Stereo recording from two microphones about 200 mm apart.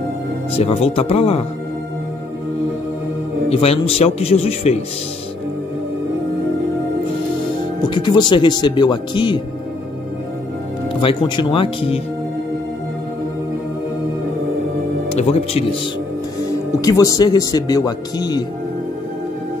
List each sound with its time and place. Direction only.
0.6 s speech: 30° left (ahead or behind)
3.4 s speech: 30° left (ahead or behind)
7.9 s speech: 20° left (ahead or behind)
11.0 s speech: 25° left (ahead or behind)
15.0 s speech: 30° left (ahead or behind)
16.8 s speech: 15° left (ahead or behind)